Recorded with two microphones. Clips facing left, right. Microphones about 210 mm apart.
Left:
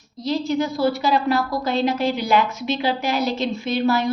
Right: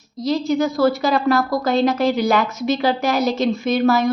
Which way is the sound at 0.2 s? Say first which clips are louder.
Right 3 dB; 40° right (ahead or behind).